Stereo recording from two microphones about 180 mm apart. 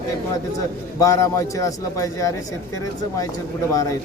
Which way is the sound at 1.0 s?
15° left (ahead or behind).